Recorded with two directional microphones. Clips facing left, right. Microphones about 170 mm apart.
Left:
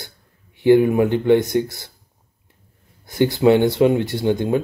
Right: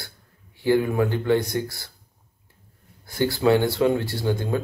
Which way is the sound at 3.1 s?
20° left (ahead or behind).